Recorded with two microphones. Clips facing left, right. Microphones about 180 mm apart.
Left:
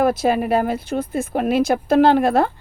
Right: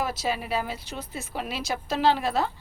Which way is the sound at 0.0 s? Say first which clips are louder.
Left 11 dB; 55° left (ahead or behind).